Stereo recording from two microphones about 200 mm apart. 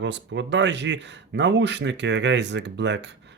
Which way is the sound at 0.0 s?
65° right (ahead or behind).